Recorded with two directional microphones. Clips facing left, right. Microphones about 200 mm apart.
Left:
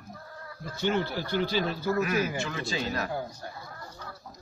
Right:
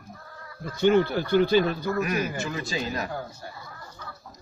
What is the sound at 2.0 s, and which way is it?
A man's voice, 15° right (ahead or behind).